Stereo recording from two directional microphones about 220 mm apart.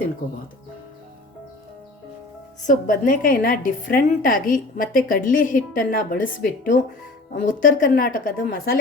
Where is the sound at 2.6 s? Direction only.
40° left (ahead or behind).